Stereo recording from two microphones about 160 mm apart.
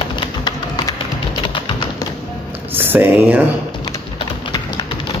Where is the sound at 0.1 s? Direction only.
25° left (ahead or behind).